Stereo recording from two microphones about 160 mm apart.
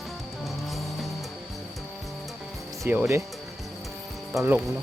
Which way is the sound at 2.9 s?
15° right (ahead or behind).